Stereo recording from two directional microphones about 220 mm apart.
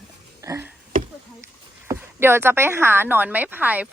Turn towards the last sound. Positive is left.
turn(degrees=-5)  # may be behind; listen again after turning